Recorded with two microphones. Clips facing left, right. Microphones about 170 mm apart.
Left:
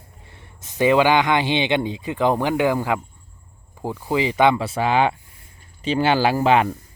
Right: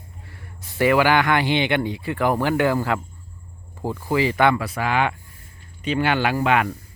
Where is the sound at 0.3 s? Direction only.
20° left (ahead or behind).